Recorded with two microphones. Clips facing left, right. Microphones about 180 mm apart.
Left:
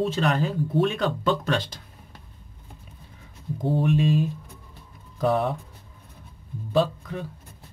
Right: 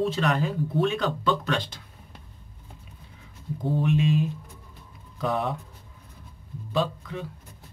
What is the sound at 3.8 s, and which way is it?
Speech, 40° left (ahead or behind).